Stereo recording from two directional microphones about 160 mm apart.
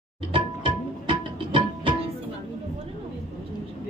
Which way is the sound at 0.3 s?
35° right (ahead or behind).